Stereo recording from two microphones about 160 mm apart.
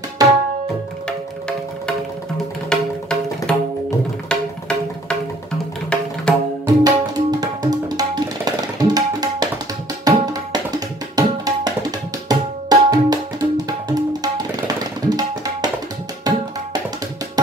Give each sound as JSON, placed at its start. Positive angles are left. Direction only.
{"t": 0.2, "sound": "tabla", "side_deg": -25}
{"t": 2.7, "sound": "music", "side_deg": 5}
{"t": 3.5, "sound": "tabla", "side_deg": 5}
{"t": 4.3, "sound": "music", "side_deg": 5}
{"t": 6.3, "sound": "tabla", "side_deg": 5}
{"t": 6.6, "sound": "tabla", "side_deg": -25}